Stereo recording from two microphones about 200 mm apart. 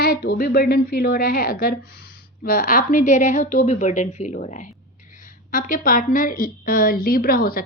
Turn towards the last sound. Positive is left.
turn(degrees=50)  # may be behind; listen again after turning